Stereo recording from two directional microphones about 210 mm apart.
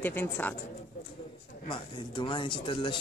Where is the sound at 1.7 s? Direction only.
20° left (ahead or behind).